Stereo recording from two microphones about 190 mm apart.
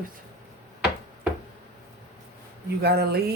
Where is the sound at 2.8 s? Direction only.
55° right (ahead or behind).